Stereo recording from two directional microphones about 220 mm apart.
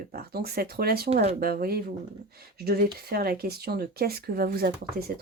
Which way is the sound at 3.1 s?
45° right (ahead or behind).